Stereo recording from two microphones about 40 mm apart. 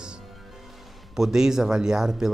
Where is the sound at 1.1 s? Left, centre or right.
Centre.